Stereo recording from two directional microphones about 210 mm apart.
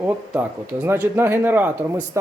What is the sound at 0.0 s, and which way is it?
Speech, 10° right (ahead or behind).